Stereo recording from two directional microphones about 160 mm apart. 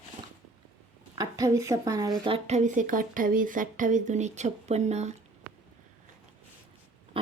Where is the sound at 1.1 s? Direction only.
25° right (ahead or behind); by 5.2 s 45° right (ahead or behind).